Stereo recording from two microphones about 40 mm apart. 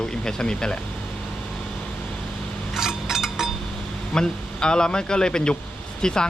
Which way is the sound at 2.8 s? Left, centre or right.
Centre.